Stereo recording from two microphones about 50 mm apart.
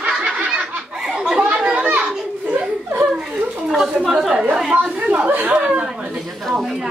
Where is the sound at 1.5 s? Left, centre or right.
Right.